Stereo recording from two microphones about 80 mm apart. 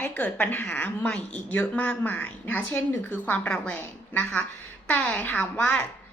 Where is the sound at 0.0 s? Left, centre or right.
Centre.